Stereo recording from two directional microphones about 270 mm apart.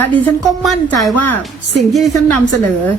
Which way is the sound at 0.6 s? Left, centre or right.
Centre.